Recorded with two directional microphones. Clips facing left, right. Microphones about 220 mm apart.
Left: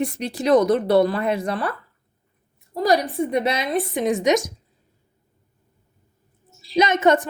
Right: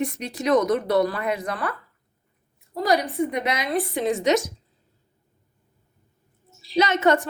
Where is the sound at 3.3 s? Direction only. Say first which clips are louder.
Left 4 dB; 30° left (ahead or behind).